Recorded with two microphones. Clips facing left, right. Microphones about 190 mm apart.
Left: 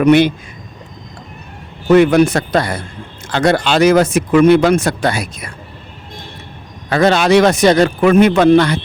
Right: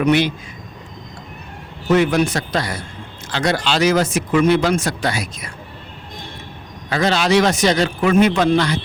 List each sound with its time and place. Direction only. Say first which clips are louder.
0.0 s speech: left 6 dB; 55° left (ahead or behind)
1.9 s speech: left 6 dB; 60° left (ahead or behind)
6.9 s speech: left 5 dB; 55° left (ahead or behind)